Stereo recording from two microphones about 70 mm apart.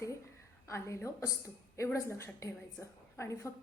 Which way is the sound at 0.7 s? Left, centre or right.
Left.